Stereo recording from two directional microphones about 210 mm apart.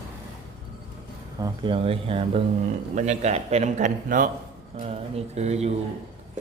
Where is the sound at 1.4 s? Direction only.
25° right (ahead or behind).